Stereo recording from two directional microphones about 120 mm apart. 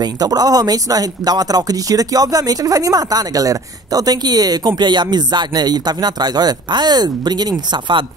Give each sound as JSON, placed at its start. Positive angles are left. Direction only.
{"t": 0.0, "sound": "speech", "side_deg": -35}